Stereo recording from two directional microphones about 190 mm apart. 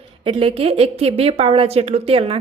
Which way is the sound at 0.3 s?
30° right (ahead or behind).